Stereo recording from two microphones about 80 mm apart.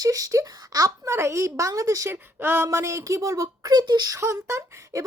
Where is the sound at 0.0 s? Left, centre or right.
Right.